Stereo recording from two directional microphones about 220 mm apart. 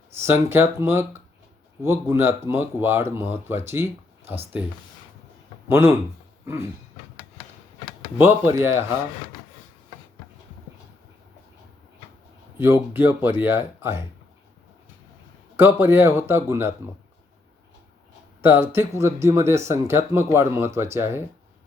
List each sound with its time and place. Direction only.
0.2 s speech: 10° right (ahead or behind)
6.4 s dog: 10° right (ahead or behind)
8.2 s speech: 10° right (ahead or behind)
12.5 s speech: 10° right (ahead or behind)
15.5 s speech: 10° right (ahead or behind)
18.4 s speech: 10° right (ahead or behind)